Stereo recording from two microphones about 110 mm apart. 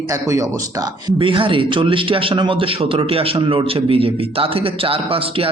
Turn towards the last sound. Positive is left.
turn(degrees=-55)  # may be behind; listen again after turning